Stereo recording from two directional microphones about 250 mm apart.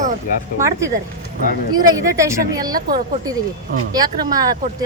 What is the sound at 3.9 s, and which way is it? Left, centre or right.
Speech, centre.